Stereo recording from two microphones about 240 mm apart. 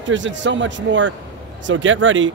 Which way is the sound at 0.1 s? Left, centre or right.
Right.